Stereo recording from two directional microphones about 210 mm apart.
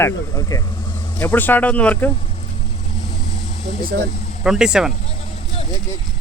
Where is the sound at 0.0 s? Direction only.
15° left (ahead or behind).